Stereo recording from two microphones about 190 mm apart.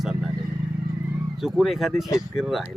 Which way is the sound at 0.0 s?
Centre (ahead or behind).